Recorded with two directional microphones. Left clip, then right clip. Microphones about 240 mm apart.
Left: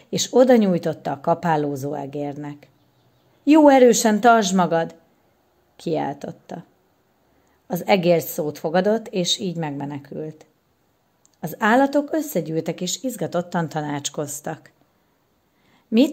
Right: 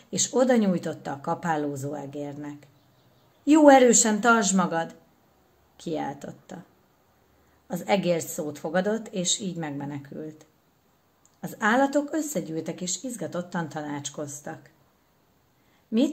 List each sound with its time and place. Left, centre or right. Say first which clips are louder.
0.1 s a woman's voice: left 7 dB; left
7.6 s speech: left 7 dB; left
15.9 s speech: left 7 dB; left